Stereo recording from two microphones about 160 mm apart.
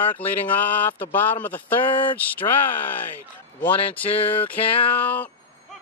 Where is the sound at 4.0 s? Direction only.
35° left (ahead or behind).